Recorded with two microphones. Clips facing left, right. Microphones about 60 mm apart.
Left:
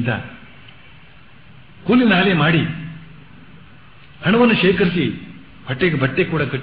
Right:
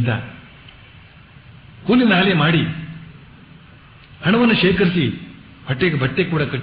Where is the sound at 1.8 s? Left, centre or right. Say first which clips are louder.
Even; centre.